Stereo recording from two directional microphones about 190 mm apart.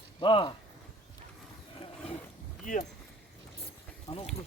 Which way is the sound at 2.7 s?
45° left (ahead or behind).